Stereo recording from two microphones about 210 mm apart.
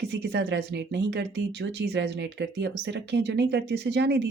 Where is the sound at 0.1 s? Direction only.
55° right (ahead or behind).